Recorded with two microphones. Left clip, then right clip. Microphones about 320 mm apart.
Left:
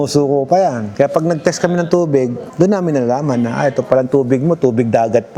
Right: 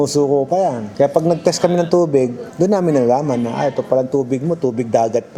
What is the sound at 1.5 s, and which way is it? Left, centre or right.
A man's voice, left.